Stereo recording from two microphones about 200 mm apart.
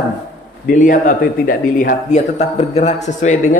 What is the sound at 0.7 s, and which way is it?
A man's voice, 45° left (ahead or behind).